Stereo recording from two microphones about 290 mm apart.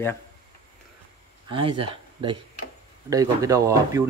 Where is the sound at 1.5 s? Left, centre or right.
Centre.